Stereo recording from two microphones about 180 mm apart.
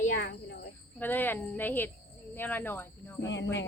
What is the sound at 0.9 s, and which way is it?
Speech, 10° left (ahead or behind).